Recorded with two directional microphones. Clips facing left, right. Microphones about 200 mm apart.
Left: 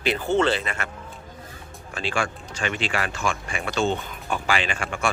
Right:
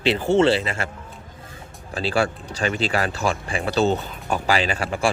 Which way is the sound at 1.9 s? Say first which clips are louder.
Right 5 dB; 35° right (ahead or behind).